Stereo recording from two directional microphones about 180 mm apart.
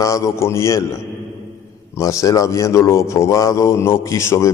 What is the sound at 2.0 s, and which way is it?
A man's voice, 15° left (ahead or behind).